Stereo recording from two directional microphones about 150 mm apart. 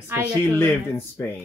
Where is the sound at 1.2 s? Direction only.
15° left (ahead or behind).